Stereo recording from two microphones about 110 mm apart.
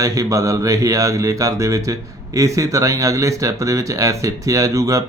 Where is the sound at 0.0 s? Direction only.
35° right (ahead or behind).